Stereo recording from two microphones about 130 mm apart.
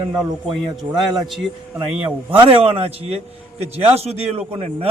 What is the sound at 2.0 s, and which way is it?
A man's voice, 40° right (ahead or behind).